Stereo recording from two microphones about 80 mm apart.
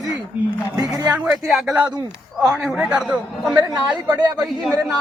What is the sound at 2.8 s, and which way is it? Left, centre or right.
Speech, centre.